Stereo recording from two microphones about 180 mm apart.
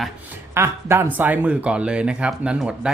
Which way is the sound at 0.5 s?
15° right (ahead or behind).